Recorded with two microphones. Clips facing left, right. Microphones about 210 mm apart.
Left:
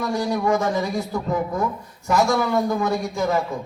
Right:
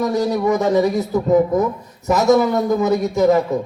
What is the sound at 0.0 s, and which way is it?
A man's voice, 20° right (ahead or behind).